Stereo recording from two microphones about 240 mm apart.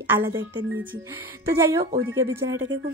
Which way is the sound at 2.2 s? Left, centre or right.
Centre.